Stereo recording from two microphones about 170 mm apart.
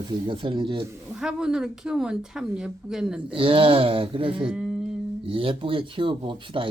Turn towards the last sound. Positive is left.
turn(degrees=-30)  # may be behind; listen again after turning